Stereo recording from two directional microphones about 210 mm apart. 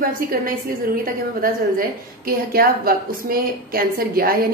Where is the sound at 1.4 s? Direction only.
45° right (ahead or behind).